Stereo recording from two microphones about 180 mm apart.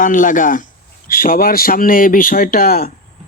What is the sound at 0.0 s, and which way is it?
A man's voice, 45° left (ahead or behind).